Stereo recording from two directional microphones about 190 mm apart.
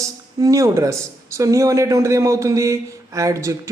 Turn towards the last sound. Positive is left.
turn(degrees=-15)  # may be behind; listen again after turning